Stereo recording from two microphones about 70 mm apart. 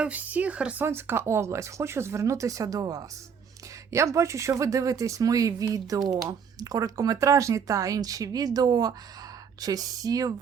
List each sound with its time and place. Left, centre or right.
0.0 s speech: right
0.8 s speech: right
3.9 s speech: right